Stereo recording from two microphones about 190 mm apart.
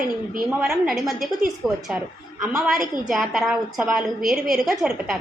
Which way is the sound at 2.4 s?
Centre (ahead or behind).